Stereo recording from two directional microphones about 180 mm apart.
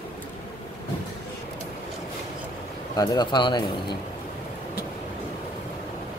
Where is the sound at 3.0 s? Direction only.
20° left (ahead or behind).